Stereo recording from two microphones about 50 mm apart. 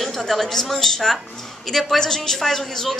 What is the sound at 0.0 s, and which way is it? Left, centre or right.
A woman's voice, centre.